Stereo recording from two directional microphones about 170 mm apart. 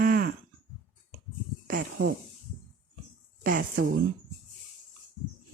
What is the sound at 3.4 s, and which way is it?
Speech, 55° right (ahead or behind).